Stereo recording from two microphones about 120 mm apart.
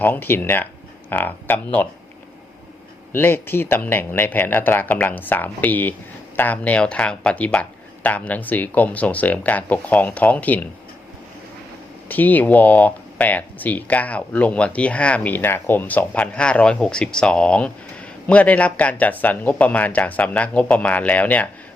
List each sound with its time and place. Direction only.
0.0 s speech: 15° left (ahead or behind)
3.1 s speech: 20° left (ahead or behind)
12.0 s speech: 15° left (ahead or behind)